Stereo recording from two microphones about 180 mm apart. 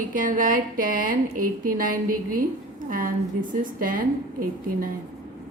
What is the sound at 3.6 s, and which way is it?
A woman's voice, 50° right (ahead or behind).